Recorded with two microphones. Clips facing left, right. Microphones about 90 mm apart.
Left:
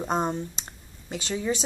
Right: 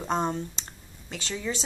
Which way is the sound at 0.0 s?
10° left (ahead or behind).